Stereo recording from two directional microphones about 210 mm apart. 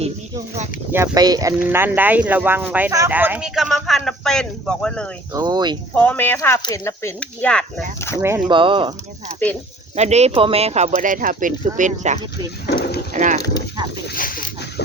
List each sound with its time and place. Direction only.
0.9 s speech: 15° right (ahead or behind); by 5.0 s 5° left (ahead or behind)
5.3 s speech: 20° right (ahead or behind)
5.9 s speech: 10° left (ahead or behind)
8.2 s speech: 10° right (ahead or behind)
8.5 s speech: 25° right (ahead or behind)
9.4 s speech: 10° left (ahead or behind)
9.9 s speech: 30° right (ahead or behind)
12.6 s a sound: 50° left (ahead or behind)
13.1 s speech: 35° right (ahead or behind)
14.2 s speech: 40° left (ahead or behind)